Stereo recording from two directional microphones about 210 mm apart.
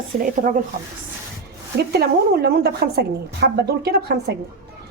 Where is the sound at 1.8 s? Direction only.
50° right (ahead or behind).